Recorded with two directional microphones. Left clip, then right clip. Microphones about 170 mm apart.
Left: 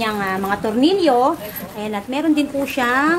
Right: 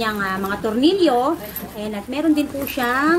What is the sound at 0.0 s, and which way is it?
A woman's voice, 20° left (ahead or behind).